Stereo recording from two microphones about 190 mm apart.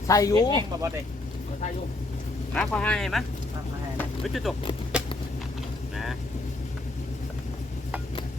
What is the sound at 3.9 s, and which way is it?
Vehicle, centre (ahead or behind).